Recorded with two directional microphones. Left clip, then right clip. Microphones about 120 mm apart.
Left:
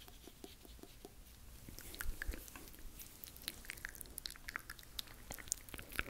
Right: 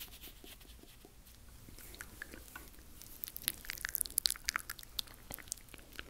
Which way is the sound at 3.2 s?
15° right (ahead or behind).